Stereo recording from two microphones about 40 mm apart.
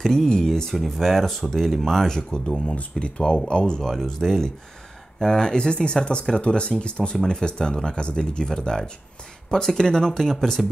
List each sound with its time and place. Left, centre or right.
0.0 s speech: centre
2.0 s speech: centre
2.7 s speech: left
4.0 s speech: centre